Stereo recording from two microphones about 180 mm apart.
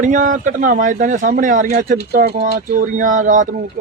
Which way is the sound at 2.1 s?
55° right (ahead or behind).